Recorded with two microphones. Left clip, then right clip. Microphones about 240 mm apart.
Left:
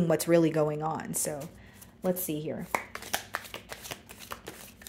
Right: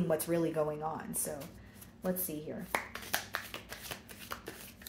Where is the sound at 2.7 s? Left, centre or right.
Left.